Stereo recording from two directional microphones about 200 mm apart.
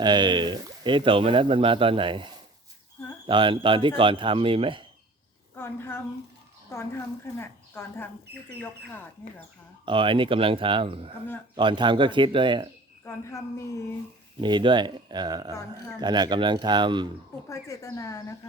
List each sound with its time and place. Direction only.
0.0 s speech: 20° right (ahead or behind)
5.5 s a woman's voice: 10° left (ahead or behind)
7.3 s speech: 10° left (ahead or behind)
9.8 s speech: 25° right (ahead or behind)
14.4 s speech: 25° right (ahead or behind)
17.5 s speech: 15° left (ahead or behind)